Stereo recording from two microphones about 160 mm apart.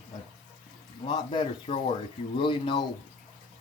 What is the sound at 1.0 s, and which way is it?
Speech, 30° left (ahead or behind).